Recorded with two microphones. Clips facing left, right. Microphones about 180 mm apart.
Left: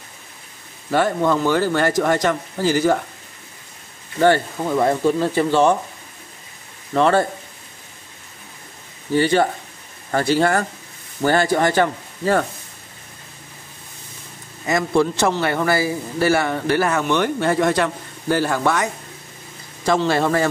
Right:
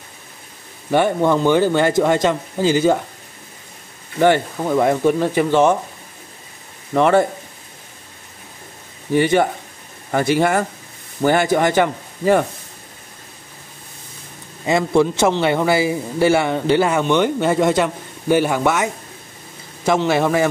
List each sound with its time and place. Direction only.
0.8 s a man's voice: 20° right (ahead or behind)
4.2 s speech: 15° right (ahead or behind)
6.9 s speech: 15° right (ahead or behind)
9.1 s speech: 15° right (ahead or behind)
14.7 s a man's voice: 20° right (ahead or behind)